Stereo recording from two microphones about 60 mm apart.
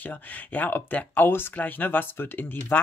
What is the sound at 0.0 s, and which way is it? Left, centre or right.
Speech, left.